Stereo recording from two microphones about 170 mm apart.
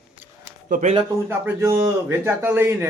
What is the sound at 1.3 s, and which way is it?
A man's voice, 15° right (ahead or behind).